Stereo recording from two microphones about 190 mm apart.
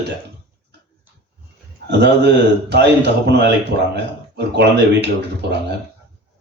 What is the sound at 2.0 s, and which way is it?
A man's voice, 60° right (ahead or behind).